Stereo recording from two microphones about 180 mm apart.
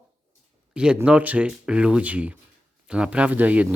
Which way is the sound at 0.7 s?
5° right (ahead or behind).